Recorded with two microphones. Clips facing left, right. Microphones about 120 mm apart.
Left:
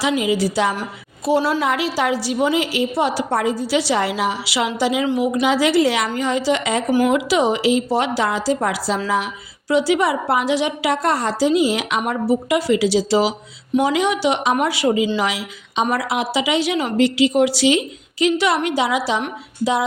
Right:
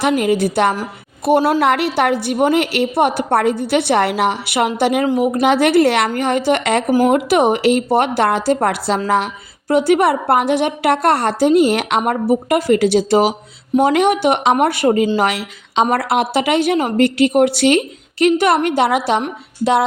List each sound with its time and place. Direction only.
0.0 s a woman's voice: 60° right (ahead or behind)
5.0 s a woman's voice: 45° right (ahead or behind); by 6.9 s 60° right (ahead or behind)
6.9 s a woman's voice: 45° right (ahead or behind); by 19.2 s 60° right (ahead or behind)